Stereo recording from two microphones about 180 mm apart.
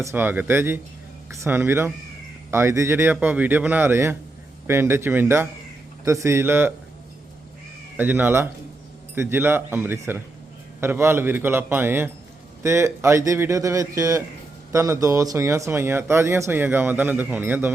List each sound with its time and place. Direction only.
0.0 s speech: 10° right (ahead or behind)
7.9 s speech: 10° right (ahead or behind)